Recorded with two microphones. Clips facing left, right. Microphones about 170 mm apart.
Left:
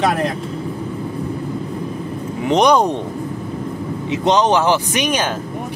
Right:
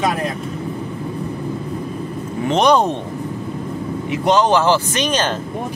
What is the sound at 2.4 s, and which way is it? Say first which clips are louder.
Speech: left 1 dB; 15° left (ahead or behind).